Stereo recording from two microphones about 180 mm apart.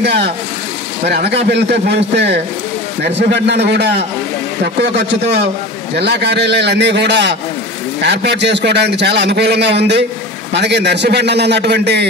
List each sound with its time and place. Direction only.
0.0 s a man's voice: 65° right (ahead or behind)
5.9 s a man's voice: 70° right (ahead or behind)